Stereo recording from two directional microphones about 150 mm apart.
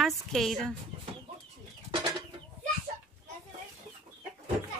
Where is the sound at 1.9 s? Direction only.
30° right (ahead or behind).